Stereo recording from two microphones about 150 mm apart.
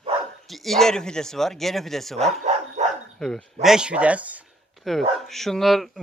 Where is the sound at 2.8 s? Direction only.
50° right (ahead or behind).